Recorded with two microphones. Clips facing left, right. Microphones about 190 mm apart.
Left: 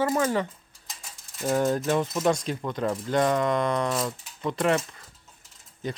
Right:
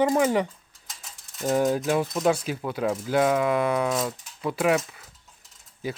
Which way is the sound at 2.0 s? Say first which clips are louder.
Right 1 dB; centre (ahead or behind).